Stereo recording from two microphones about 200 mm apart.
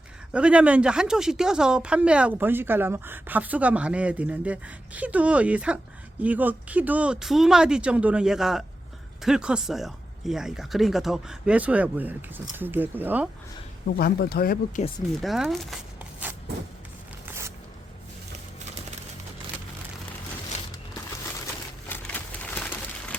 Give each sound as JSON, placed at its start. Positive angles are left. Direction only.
{"t": 0.3, "sound": "speech", "side_deg": -5}
{"t": 13.8, "sound": "speech", "side_deg": 50}
{"t": 15.2, "sound": "speech", "side_deg": 0}
{"t": 21.4, "sound": "a sound", "side_deg": 10}